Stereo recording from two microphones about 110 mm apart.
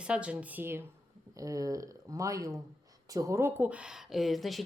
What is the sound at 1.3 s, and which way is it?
A woman's voice, 30° right (ahead or behind).